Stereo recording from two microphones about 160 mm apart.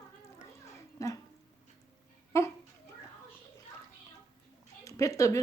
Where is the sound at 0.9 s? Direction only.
20° left (ahead or behind).